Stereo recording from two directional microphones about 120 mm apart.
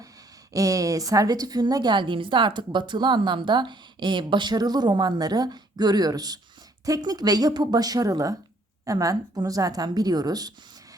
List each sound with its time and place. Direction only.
0.5 s a woman's voice: 30° right (ahead or behind)